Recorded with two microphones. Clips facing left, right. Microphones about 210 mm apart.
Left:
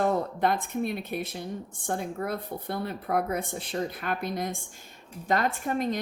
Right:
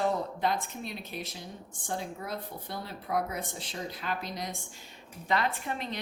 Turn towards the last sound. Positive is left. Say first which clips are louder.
# left 8 dB
turn(degrees=45)  # may be behind; listen again after turning